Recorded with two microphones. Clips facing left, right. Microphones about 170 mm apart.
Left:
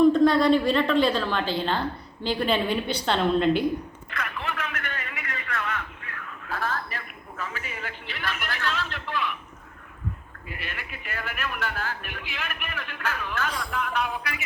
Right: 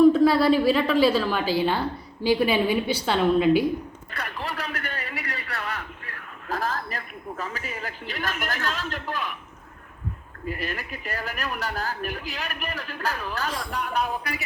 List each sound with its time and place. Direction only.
0.0 s a woman's voice: 5° right (ahead or behind)
4.1 s a sound: 35° right (ahead or behind)
10.5 s a man's voice: 40° right (ahead or behind)